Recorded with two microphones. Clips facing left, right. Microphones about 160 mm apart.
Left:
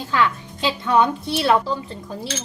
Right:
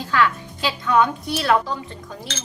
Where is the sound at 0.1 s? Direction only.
20° left (ahead or behind).